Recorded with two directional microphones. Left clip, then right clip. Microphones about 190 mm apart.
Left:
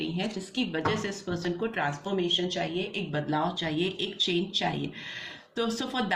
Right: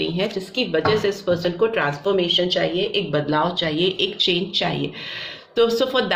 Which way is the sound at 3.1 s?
35° right (ahead or behind).